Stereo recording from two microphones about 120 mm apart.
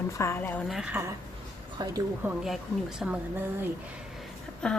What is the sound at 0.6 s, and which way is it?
Speech, 5° right (ahead or behind).